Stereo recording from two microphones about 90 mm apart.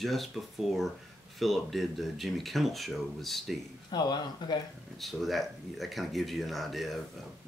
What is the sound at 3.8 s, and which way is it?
Speech, 50° left (ahead or behind).